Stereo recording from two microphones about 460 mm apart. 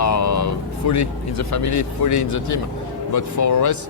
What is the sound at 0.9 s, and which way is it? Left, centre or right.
Speech, left.